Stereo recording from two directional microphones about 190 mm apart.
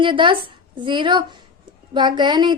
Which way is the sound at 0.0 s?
25° right (ahead or behind).